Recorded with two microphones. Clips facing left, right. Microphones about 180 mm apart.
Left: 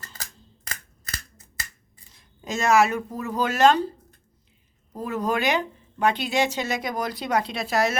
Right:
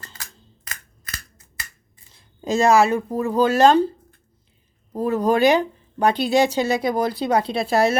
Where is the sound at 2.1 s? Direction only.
30° right (ahead or behind).